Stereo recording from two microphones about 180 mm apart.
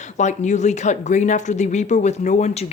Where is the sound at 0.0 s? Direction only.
40° left (ahead or behind).